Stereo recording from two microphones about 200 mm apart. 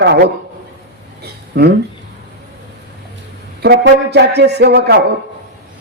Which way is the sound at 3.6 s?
55° right (ahead or behind).